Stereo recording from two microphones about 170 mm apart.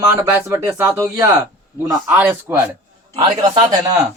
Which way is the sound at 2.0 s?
10° right (ahead or behind).